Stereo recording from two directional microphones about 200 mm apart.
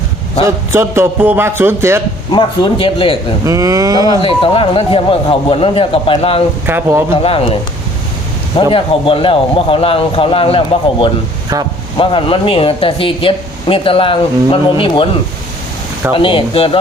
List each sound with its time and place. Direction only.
0.4 s a man's voice: 15° right (ahead or behind)
2.3 s speech: 25° left (ahead or behind)
3.4 s a man's voice: 15° right (ahead or behind)
4.2 s speech: 25° left (ahead or behind)
6.7 s a man's voice: 10° right (ahead or behind)
7.1 s speech: 30° left (ahead or behind)
8.7 s speech: 25° left (ahead or behind)
16.1 s speech: 25° left (ahead or behind)